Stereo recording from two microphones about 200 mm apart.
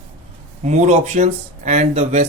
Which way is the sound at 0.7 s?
35° right (ahead or behind).